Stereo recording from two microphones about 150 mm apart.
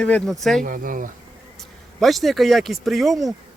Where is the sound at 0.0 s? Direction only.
5° left (ahead or behind).